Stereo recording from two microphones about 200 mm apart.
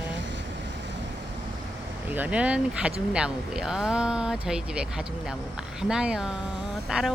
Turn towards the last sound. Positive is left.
turn(degrees=-5)  # may be behind; listen again after turning